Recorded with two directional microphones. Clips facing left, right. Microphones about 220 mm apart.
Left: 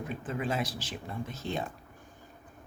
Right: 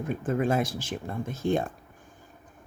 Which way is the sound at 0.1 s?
50° right (ahead or behind).